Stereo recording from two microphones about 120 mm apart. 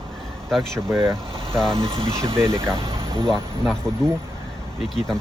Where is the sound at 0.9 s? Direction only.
5° left (ahead or behind).